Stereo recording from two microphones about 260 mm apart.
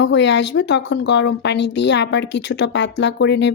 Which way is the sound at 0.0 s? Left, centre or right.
Left.